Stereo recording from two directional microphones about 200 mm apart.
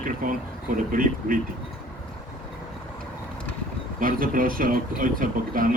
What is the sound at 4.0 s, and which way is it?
Speech, 45° right (ahead or behind).